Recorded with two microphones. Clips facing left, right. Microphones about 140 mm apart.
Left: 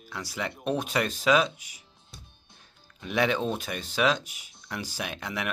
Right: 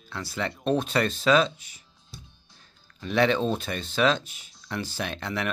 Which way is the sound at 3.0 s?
10° left (ahead or behind).